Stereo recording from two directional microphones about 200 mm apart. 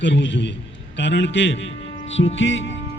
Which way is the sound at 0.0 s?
65° left (ahead or behind).